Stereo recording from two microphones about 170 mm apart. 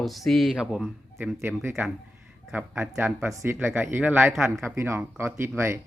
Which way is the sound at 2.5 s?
15° right (ahead or behind).